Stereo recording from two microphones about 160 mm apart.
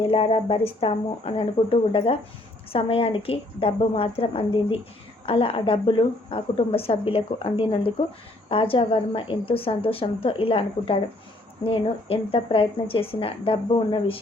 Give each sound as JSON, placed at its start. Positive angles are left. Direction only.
{"t": 0.0, "sound": "speech", "side_deg": 35}